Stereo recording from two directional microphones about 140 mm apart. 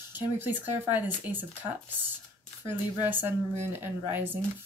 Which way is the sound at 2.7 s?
15° right (ahead or behind).